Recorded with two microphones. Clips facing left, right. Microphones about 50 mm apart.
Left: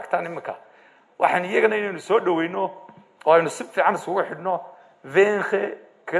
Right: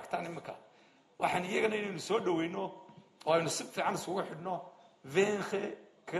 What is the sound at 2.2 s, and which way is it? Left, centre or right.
A man's voice, left.